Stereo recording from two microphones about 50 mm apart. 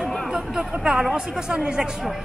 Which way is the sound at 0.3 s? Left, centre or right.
Centre.